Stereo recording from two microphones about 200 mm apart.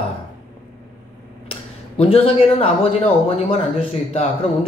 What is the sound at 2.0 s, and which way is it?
Speech, 30° left (ahead or behind).